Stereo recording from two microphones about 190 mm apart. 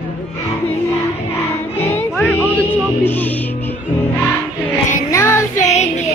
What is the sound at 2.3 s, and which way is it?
Music, 10° left (ahead or behind).